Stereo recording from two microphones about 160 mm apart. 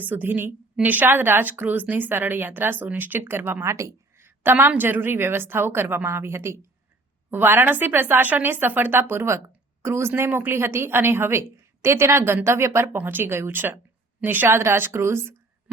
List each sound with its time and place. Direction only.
0.0 s a woman's voice: 10° right (ahead or behind)